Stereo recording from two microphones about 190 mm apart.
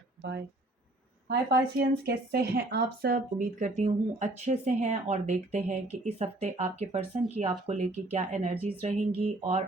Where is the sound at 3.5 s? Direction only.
35° right (ahead or behind).